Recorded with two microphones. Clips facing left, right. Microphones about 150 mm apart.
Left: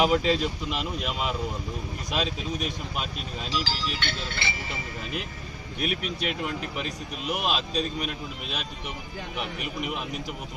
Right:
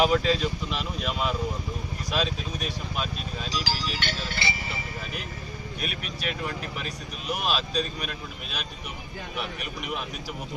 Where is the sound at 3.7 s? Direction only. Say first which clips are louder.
Right 1 dB; 40° right (ahead or behind).